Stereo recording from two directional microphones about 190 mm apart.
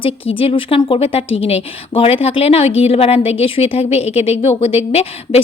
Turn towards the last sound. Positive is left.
turn(degrees=30)  # may be behind; listen again after turning